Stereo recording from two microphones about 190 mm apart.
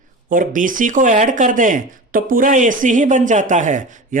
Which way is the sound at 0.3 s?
45° right (ahead or behind).